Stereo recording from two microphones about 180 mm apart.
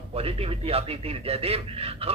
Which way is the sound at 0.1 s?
30° right (ahead or behind).